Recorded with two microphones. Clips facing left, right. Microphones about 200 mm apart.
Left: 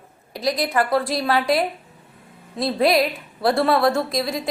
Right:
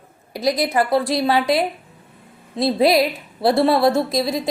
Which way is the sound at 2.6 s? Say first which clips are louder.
Right 3 dB; 30° right (ahead or behind).